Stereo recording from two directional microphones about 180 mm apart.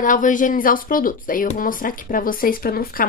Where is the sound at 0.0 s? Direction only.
45° left (ahead or behind).